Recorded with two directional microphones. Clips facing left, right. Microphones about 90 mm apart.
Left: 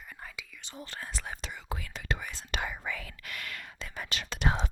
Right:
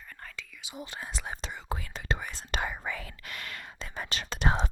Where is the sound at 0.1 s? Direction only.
10° left (ahead or behind).